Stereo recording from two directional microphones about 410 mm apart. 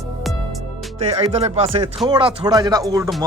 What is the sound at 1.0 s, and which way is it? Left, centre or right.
Speech, centre.